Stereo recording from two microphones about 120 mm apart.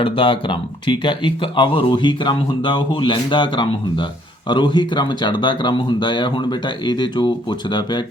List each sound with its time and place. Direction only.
0.0 s speech: 45° left (ahead or behind)